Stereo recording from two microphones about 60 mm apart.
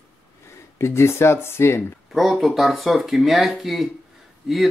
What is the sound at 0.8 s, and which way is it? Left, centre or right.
Speech, left.